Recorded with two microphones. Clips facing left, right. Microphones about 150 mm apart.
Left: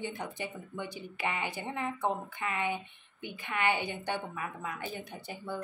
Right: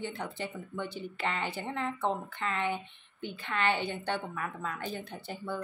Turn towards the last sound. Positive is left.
turn(degrees=15)  # may be behind; listen again after turning